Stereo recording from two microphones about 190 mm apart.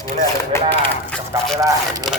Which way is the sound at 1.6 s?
15° right (ahead or behind).